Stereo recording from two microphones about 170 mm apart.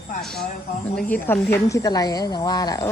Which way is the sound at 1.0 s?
10° left (ahead or behind).